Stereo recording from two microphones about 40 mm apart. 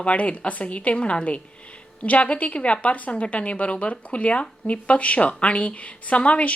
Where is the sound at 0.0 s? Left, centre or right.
Left.